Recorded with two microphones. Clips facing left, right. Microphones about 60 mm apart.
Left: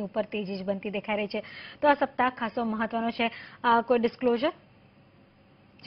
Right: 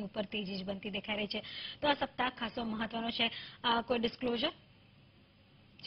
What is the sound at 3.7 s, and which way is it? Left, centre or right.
Speech, left.